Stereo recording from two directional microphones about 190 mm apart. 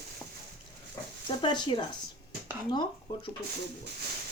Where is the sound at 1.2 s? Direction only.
25° left (ahead or behind).